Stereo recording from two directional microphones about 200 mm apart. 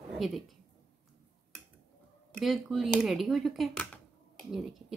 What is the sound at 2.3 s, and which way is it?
Speech, centre (ahead or behind).